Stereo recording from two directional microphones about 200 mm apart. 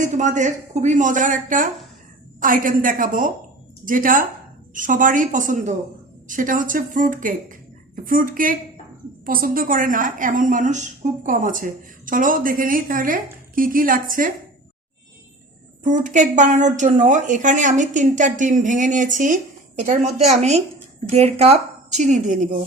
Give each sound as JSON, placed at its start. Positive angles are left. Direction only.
{"t": 0.0, "sound": "a woman's voice", "side_deg": -35}
{"t": 15.8, "sound": "speech", "side_deg": -40}